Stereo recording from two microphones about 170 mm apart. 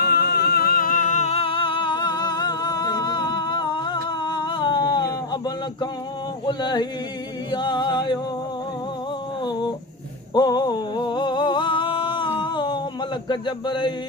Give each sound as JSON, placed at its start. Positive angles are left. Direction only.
{"t": 0.0, "sound": "music", "side_deg": 70}
{"t": 6.4, "sound": "a sound", "side_deg": 25}
{"t": 7.5, "sound": "music", "side_deg": 25}
{"t": 9.4, "sound": "a sound", "side_deg": 25}
{"t": 10.3, "sound": "music", "side_deg": 25}
{"t": 13.2, "sound": "speech", "side_deg": 25}